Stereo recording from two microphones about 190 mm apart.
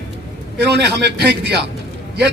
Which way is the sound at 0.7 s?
60° right (ahead or behind).